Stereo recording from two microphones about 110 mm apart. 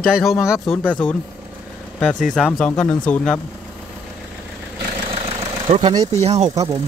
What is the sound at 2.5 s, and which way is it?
Speech, 10° left (ahead or behind).